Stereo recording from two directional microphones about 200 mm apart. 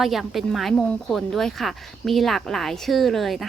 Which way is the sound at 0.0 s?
Centre (ahead or behind).